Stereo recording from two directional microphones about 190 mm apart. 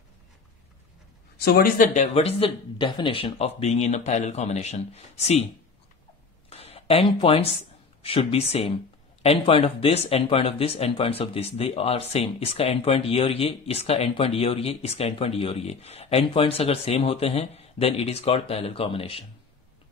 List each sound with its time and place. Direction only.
1.4 s speech: 55° left (ahead or behind)
2.1 s speech: 30° left (ahead or behind)
6.5 s a sound: 30° left (ahead or behind)
8.0 s speech: 30° left (ahead or behind)